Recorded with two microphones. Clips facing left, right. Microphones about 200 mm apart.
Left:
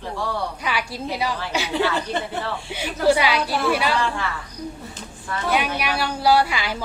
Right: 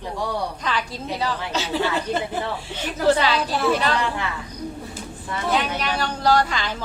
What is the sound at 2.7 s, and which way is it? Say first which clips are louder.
A woman's voice: left 1 dB; 10° left (ahead or behind).